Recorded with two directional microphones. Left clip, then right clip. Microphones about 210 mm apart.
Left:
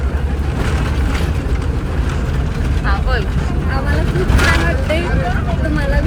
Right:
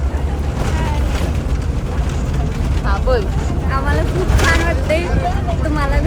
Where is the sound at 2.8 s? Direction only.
25° right (ahead or behind).